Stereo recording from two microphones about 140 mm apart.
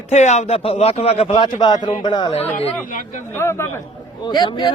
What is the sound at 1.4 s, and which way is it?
Speech, 30° left (ahead or behind).